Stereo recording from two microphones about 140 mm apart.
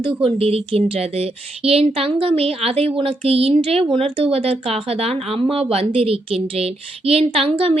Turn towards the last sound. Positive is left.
turn(degrees=-40)  # may be behind; listen again after turning